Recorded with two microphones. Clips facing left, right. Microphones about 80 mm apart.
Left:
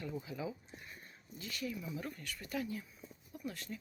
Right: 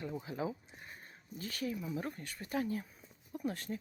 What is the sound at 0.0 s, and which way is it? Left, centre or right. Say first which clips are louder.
Speech: right 3 dB; right.